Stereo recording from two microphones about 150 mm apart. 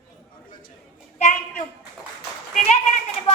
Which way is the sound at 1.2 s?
55° left (ahead or behind).